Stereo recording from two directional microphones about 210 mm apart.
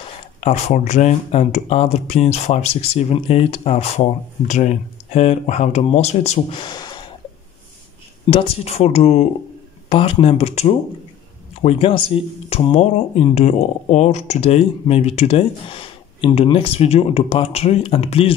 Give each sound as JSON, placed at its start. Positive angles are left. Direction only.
{"t": 0.4, "sound": "speech", "side_deg": 30}
{"t": 8.3, "sound": "speech", "side_deg": 30}